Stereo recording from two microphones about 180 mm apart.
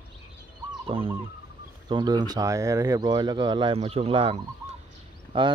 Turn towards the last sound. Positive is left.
turn(degrees=-30)  # may be behind; listen again after turning